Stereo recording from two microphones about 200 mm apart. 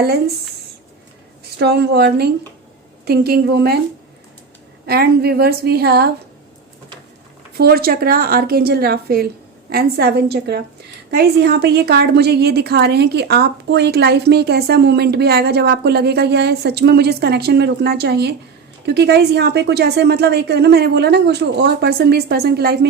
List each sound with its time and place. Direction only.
0.0 s a woman's voice: 50° right (ahead or behind)
1.5 s a woman's voice: 55° right (ahead or behind)
4.9 s a woman's voice: 50° right (ahead or behind)
7.5 s a woman's voice: 50° right (ahead or behind)